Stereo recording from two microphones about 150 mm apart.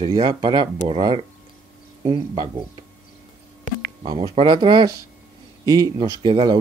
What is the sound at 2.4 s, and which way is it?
Speech, 30° right (ahead or behind).